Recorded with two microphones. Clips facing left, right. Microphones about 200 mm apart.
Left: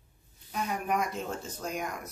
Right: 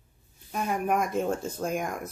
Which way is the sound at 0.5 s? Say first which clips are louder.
Right 4 dB; 50° right (ahead or behind).